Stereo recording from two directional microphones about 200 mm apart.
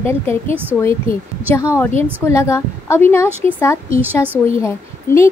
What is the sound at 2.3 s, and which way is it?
A woman's voice, 15° left (ahead or behind).